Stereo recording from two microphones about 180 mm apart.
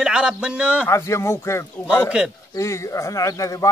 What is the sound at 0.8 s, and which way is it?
Speech, 15° left (ahead or behind).